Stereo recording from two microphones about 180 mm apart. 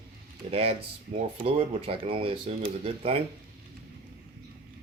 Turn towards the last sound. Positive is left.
turn(degrees=-30)  # may be behind; listen again after turning